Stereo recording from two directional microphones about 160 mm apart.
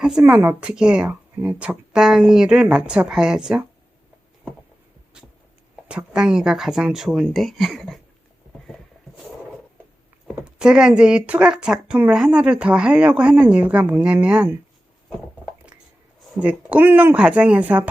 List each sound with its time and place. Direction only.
0.0 s speech: 5° right (ahead or behind)
5.9 s speech: 5° right (ahead or behind)
10.2 s speech: 5° right (ahead or behind)
16.4 s speech: 10° right (ahead or behind)